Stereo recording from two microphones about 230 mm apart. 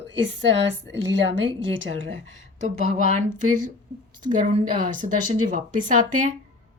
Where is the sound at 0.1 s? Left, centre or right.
Right.